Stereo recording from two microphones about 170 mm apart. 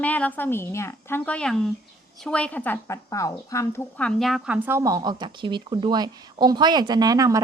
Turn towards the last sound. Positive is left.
turn(degrees=-20)  # may be behind; listen again after turning